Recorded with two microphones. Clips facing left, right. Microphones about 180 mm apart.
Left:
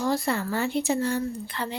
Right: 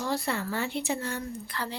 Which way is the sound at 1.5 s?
20° left (ahead or behind).